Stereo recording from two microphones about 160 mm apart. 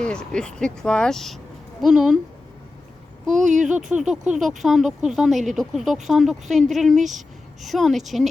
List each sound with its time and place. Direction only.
0.0 s speech: 5° left (ahead or behind)
3.3 s speech: 50° right (ahead or behind)
3.9 s speech: 10° right (ahead or behind)